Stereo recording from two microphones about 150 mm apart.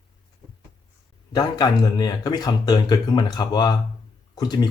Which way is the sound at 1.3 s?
25° left (ahead or behind).